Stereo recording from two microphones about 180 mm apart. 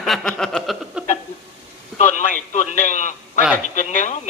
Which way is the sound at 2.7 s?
45° left (ahead or behind).